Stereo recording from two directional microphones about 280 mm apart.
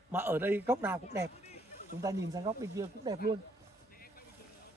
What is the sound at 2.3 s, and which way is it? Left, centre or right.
Speech, centre.